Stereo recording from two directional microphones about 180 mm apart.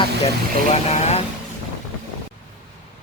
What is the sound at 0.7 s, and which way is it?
Speech, 35° left (ahead or behind).